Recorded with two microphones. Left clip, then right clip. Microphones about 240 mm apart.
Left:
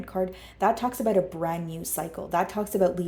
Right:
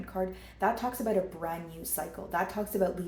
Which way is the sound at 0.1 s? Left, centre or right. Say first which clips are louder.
Left 5 dB; left.